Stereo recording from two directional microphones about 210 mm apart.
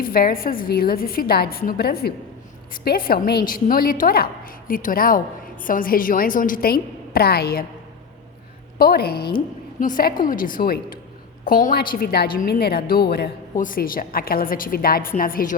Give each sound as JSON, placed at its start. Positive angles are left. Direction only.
{"t": 0.0, "sound": "a woman's voice", "side_deg": 45}
{"t": 8.8, "sound": "a woman's voice", "side_deg": 45}